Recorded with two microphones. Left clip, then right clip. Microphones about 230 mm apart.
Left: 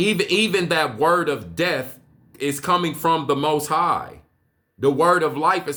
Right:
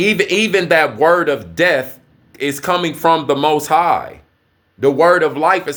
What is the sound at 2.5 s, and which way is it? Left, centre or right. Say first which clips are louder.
Speech: right 3 dB; centre.